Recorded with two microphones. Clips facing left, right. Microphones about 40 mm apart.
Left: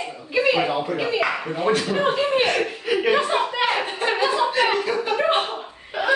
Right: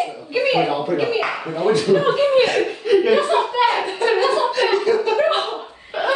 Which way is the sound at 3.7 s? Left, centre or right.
Centre.